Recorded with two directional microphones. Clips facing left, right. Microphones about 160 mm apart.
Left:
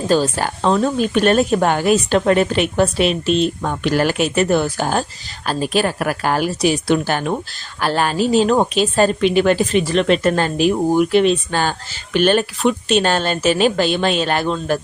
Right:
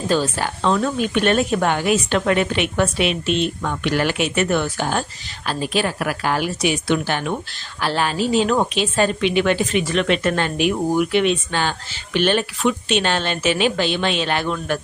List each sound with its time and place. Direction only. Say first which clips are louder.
0.1 s speech: left 4 dB; 40° left (ahead or behind)